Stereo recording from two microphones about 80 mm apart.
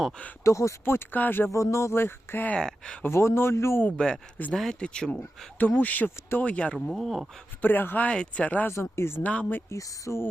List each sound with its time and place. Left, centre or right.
0.4 s speech: left
1.5 s speech: left
2.6 s speech: centre
3.0 s speech: left
3.8 s speech: centre
5.5 s speech: left
6.7 s speech: centre
7.6 s speech: left
8.7 s speech: left
9.2 s speech: centre
9.6 s speech: left